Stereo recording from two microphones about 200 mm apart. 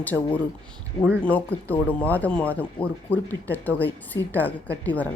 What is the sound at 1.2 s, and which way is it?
Speech, 10° left (ahead or behind).